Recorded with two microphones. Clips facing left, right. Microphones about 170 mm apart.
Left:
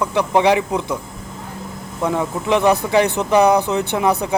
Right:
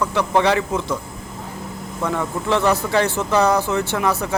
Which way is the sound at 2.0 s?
15° left (ahead or behind).